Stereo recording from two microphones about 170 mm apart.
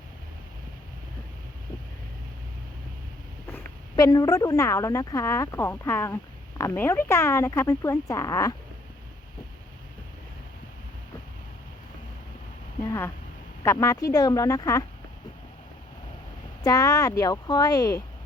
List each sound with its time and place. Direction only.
3.5 s a woman's voice: 20° left (ahead or behind)
12.8 s a sound: 15° left (ahead or behind)
13.7 s speech: 20° left (ahead or behind)
16.6 s speech: 20° left (ahead or behind)